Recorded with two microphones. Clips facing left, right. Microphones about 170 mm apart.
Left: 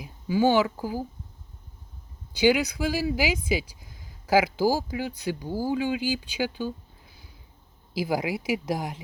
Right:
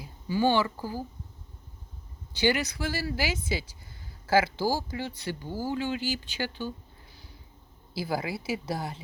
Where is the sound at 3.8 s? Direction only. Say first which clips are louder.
Left 1 dB; 90° left.